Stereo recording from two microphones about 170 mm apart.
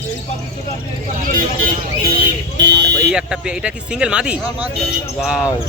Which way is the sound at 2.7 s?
80° right.